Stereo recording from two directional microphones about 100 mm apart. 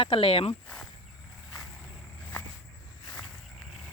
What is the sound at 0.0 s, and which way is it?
Speech, 70° left (ahead or behind).